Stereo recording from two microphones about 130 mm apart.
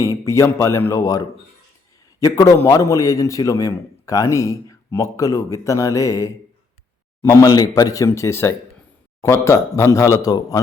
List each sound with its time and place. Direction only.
0.0 s a man's voice: 25° left (ahead or behind)